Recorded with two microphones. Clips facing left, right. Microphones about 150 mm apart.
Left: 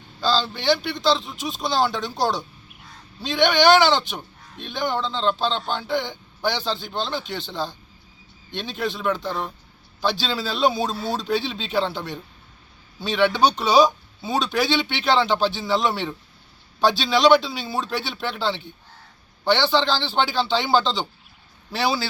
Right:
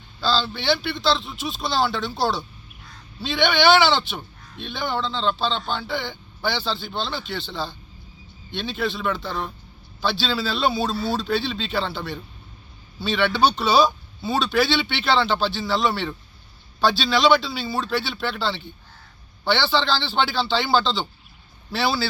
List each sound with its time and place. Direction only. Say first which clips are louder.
0.2 s speech: left 1 dB; 15° left (ahead or behind)